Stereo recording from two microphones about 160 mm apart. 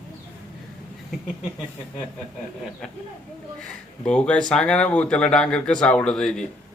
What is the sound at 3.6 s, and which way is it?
Speech, 5° left (ahead or behind).